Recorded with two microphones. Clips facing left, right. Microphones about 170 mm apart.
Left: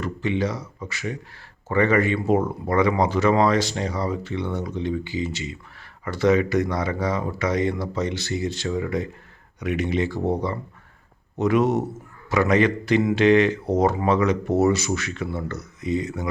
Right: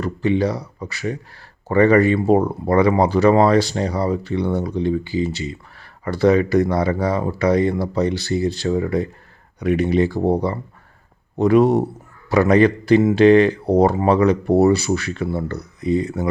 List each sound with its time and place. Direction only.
0.0 s speech: 35° right (ahead or behind)